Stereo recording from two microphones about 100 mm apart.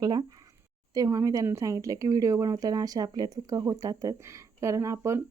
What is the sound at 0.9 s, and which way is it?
A woman's voice, 35° right (ahead or behind).